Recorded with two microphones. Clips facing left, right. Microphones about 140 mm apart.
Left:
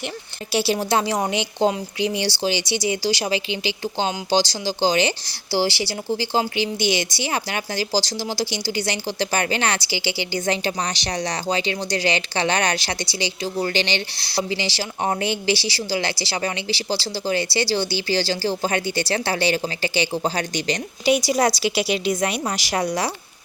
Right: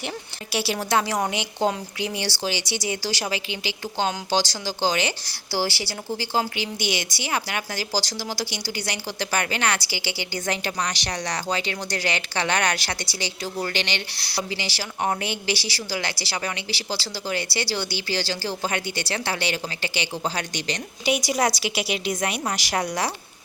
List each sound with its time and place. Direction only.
0.5 s speech: 25° left (ahead or behind)
21.0 s a woman's voice: 15° right (ahead or behind)
22.4 s speech: 25° left (ahead or behind)